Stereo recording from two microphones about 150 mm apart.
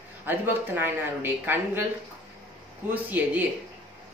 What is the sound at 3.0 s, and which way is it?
Speech, 10° right (ahead or behind).